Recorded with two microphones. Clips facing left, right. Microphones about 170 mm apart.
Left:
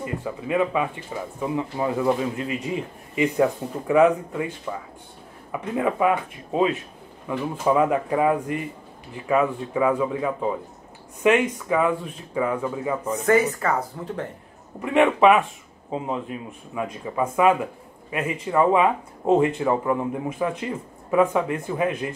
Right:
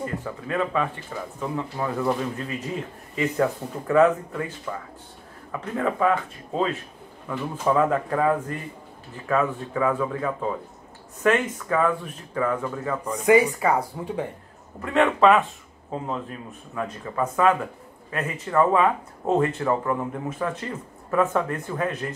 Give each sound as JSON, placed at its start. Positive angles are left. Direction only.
{"t": 0.0, "sound": "speech", "side_deg": 10}
{"t": 13.2, "sound": "speech", "side_deg": -10}
{"t": 14.8, "sound": "speech", "side_deg": 15}